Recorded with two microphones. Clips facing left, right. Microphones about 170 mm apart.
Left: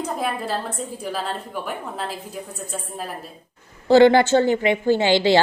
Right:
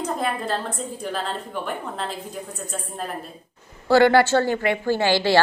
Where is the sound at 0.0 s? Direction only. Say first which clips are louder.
Even; 5° left (ahead or behind).